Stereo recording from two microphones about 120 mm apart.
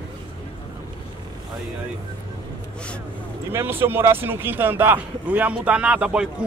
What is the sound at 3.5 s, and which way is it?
Speech, 20° right (ahead or behind).